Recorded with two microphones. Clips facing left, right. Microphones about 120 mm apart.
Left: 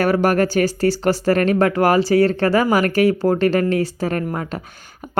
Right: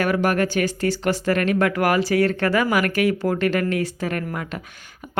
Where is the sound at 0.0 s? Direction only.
40° left (ahead or behind).